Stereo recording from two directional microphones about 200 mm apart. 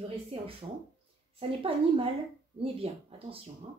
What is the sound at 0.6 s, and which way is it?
Speech, 25° right (ahead or behind).